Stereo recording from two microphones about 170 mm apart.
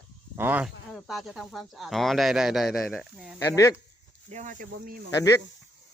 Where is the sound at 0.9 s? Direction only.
Centre (ahead or behind).